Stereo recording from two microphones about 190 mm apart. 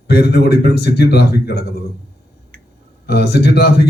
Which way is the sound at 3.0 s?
60° left (ahead or behind).